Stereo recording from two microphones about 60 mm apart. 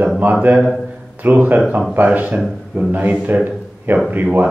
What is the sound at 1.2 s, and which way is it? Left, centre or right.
Speech, right.